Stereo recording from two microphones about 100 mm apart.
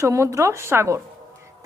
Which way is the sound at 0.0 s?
30° right (ahead or behind).